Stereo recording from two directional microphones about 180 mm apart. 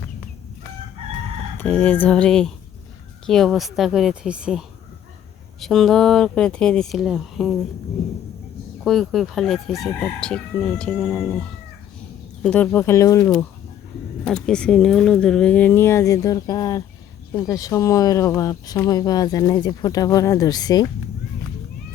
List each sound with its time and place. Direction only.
1.5 s speech: 10° left (ahead or behind)
8.8 s speech: centre (ahead or behind); by 13.3 s 20° left (ahead or behind)
14.3 s speech: 5° left (ahead or behind); by 20.8 s 20° left (ahead or behind)